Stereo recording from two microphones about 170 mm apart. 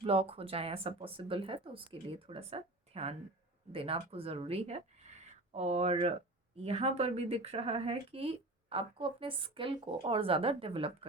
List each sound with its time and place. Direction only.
0.0 s speech: 35° right (ahead or behind)